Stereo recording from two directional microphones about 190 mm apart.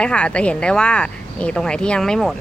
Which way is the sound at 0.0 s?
5° left (ahead or behind).